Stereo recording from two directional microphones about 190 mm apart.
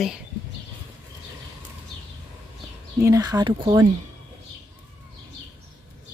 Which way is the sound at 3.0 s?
15° right (ahead or behind).